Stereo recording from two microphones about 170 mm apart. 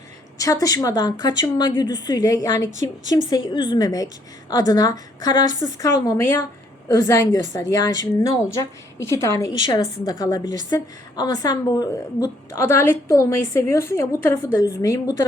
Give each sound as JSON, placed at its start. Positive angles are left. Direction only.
{"t": 0.3, "sound": "a woman's voice", "side_deg": 20}
{"t": 2.7, "sound": "a woman's voice", "side_deg": -45}
{"t": 3.2, "sound": "a woman's voice", "side_deg": 25}